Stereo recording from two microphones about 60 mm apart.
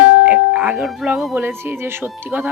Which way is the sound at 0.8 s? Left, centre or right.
Centre.